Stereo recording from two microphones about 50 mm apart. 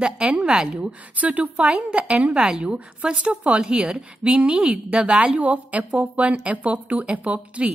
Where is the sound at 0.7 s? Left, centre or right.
Right.